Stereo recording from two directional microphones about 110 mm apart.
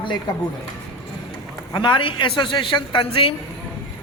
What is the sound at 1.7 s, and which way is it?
A man's voice, 45° left (ahead or behind).